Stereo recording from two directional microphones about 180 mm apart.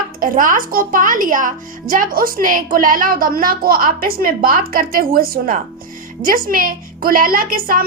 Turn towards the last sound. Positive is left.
turn(degrees=-50)  # may be behind; listen again after turning